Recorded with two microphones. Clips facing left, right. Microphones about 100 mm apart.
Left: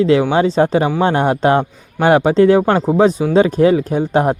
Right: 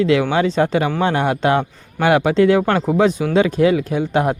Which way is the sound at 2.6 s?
25° left (ahead or behind).